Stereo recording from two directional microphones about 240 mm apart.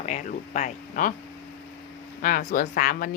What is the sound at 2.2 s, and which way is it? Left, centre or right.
Speech, left.